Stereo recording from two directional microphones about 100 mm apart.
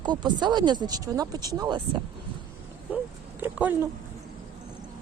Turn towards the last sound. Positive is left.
turn(degrees=-20)  # may be behind; listen again after turning